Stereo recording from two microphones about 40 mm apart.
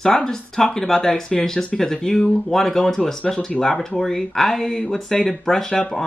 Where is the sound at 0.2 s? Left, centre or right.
Centre.